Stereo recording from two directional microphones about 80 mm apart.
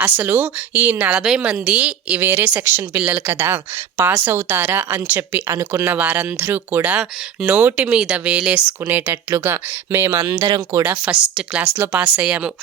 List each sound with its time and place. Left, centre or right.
0.2 s speech: centre
1.2 s speech: centre
9.4 s speech: right
10.4 s speech: right
10.8 s speech: centre
11.6 s speech: right